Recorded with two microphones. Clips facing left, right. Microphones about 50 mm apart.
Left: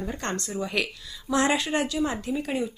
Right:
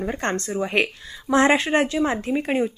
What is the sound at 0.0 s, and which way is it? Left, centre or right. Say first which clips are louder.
Speech: right 6 dB; right.